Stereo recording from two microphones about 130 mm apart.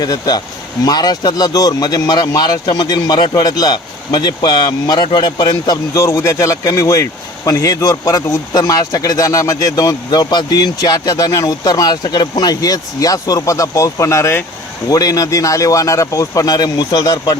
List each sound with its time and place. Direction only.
0.0 s speech: 30° left (ahead or behind)